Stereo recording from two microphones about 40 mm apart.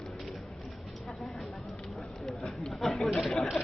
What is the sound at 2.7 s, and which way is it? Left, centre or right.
Chatter, centre.